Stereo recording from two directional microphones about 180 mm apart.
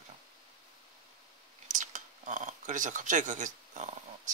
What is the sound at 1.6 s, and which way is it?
Speech, 45° right (ahead or behind).